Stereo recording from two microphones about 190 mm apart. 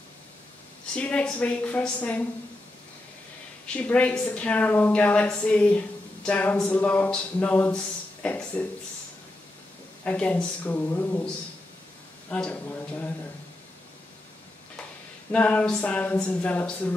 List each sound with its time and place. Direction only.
0.9 s a woman's voice: 5° left (ahead or behind)
3.7 s a woman's voice: 5° left (ahead or behind)
10.0 s a woman's voice: 5° left (ahead or behind)
15.3 s a woman's voice: 5° left (ahead or behind)